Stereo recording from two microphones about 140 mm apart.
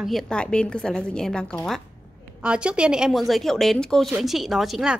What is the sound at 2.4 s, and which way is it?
A woman's voice, 5° right (ahead or behind).